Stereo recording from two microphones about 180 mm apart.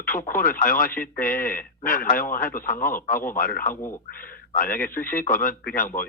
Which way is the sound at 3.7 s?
15° left (ahead or behind).